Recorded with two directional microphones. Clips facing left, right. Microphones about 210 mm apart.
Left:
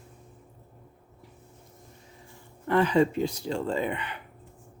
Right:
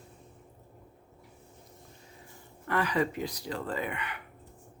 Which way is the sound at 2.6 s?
25° left (ahead or behind).